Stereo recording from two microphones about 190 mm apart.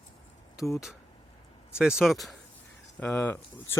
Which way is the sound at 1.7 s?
5° right (ahead or behind).